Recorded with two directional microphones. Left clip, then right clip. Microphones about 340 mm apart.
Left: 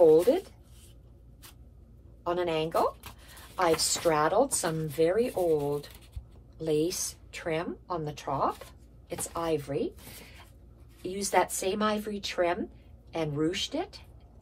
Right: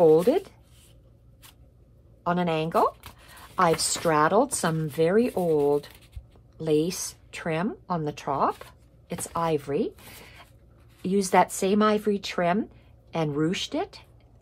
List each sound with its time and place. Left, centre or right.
2.2 s speech: centre